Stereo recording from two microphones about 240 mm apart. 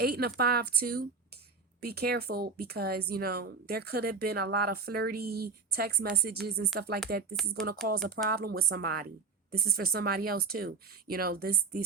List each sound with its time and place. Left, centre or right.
0.0 s speech: right
7.4 s speech: centre
8.3 s speech: right